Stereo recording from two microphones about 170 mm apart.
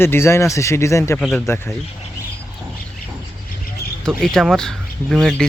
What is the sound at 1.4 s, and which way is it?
Speech, 15° left (ahead or behind).